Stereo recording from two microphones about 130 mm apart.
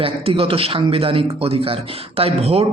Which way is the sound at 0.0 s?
45° right (ahead or behind).